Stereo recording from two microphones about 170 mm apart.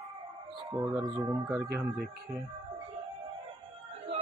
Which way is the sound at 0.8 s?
20° right (ahead or behind).